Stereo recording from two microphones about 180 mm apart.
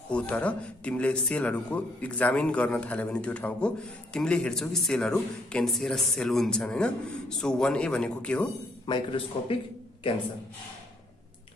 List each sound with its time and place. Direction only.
0.1 s speech: 5° left (ahead or behind)
8.8 s speech: 30° left (ahead or behind)